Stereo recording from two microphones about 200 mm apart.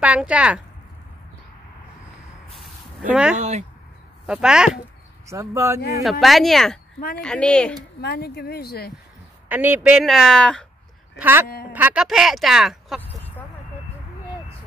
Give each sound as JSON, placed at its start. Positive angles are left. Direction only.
{"t": 0.0, "sound": "speech", "side_deg": -5}
{"t": 3.1, "sound": "speech", "side_deg": -5}
{"t": 3.3, "sound": "speech", "side_deg": -35}
{"t": 4.3, "sound": "speech", "side_deg": -5}
{"t": 5.2, "sound": "speech", "side_deg": -15}
{"t": 6.0, "sound": "speech", "side_deg": 0}
{"t": 8.0, "sound": "speech", "side_deg": 55}
{"t": 9.5, "sound": "speech", "side_deg": -10}
{"t": 11.1, "sound": "speech", "side_deg": -10}